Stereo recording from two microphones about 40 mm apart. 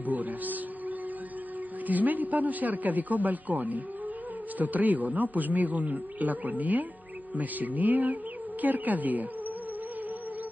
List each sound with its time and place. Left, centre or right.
0.0 s music: right
1.9 s a man's voice: right